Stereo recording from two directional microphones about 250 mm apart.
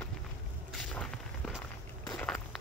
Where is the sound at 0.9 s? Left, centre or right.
Centre.